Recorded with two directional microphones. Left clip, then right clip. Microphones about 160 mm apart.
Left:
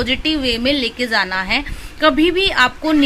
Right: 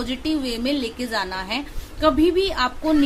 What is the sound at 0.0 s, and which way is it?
A woman's voice, 25° left (ahead or behind).